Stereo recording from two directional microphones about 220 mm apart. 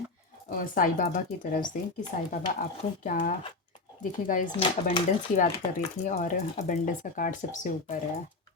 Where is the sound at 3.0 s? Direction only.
35° left (ahead or behind).